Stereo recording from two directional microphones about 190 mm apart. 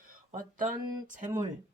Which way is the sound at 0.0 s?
45° right (ahead or behind).